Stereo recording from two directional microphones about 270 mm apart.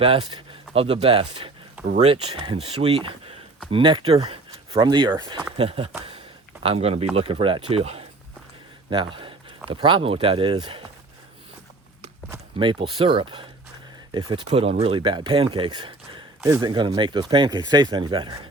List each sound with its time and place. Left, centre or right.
0.0 s speech: right
6.1 s a sound: right
7.2 s speech: right
12.3 s speech: centre